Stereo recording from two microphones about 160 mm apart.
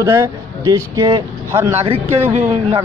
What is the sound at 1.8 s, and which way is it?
Speech, 40° right (ahead or behind).